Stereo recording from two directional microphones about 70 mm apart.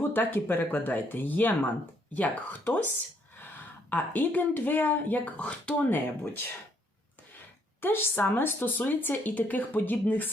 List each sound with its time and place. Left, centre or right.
0.1 s a woman's voice: left
7.8 s speech: left